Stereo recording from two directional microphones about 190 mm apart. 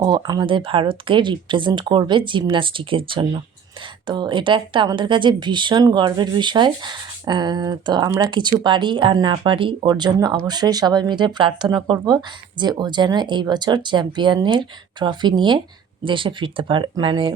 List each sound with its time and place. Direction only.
0.0 s speech: 20° right (ahead or behind)